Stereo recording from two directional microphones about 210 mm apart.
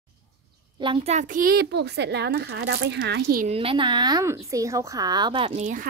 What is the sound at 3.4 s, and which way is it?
A woman's voice, 25° right (ahead or behind).